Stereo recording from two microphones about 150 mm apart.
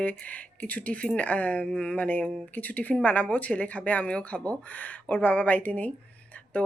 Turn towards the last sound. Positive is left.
turn(degrees=10)  # may be behind; listen again after turning